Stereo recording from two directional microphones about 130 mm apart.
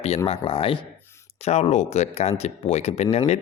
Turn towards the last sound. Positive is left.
turn(degrees=55)  # may be behind; listen again after turning